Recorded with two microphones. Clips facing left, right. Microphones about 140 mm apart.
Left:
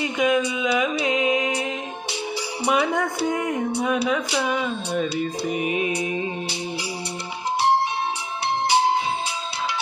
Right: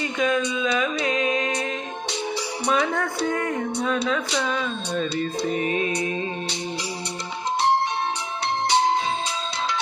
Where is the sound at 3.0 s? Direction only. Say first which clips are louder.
Left 1 dB; 20° left (ahead or behind).